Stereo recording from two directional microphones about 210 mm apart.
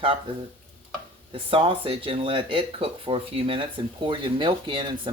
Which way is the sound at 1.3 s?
25° right (ahead or behind).